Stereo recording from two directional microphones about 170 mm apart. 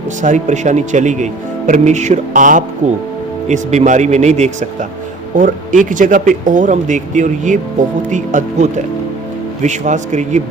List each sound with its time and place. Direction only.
0.2 s speech: 45° right (ahead or behind)